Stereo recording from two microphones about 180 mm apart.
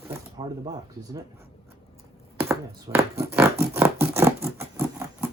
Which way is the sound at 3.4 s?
10° right (ahead or behind).